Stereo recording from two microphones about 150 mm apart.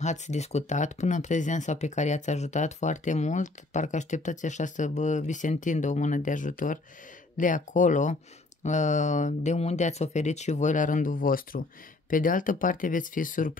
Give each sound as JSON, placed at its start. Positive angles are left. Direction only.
{"t": 0.0, "sound": "speech", "side_deg": 50}